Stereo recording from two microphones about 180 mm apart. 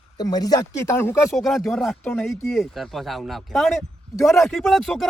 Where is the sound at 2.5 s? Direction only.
Centre (ahead or behind).